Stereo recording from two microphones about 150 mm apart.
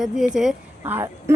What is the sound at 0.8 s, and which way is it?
Speech, 15° right (ahead or behind).